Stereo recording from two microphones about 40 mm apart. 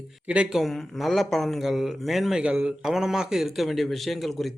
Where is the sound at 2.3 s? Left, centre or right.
Right.